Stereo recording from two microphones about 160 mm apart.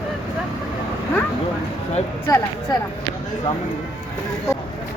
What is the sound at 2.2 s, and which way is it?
Speech, 20° left (ahead or behind).